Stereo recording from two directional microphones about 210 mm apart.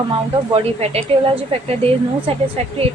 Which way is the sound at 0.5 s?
30° right (ahead or behind).